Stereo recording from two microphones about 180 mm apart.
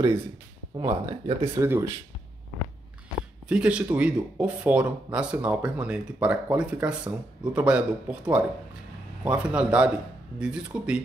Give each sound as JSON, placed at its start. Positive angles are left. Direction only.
{"t": 0.7, "sound": "speech", "side_deg": -30}
{"t": 1.6, "sound": "speech", "side_deg": -15}
{"t": 3.4, "sound": "speech", "side_deg": -5}